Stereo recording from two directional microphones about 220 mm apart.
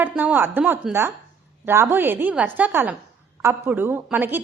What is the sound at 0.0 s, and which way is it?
A woman's voice, 5° right (ahead or behind).